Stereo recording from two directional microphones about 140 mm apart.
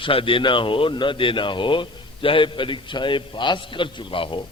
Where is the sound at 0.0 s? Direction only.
40° left (ahead or behind).